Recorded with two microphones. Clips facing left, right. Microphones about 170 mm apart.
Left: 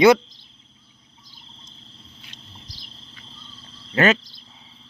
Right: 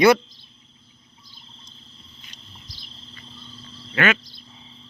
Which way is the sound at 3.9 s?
35° left (ahead or behind).